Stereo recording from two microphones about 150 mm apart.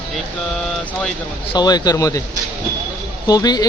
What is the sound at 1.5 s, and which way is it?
Speech, 25° left (ahead or behind).